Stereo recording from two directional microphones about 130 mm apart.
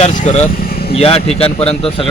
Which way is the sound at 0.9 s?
50° left (ahead or behind).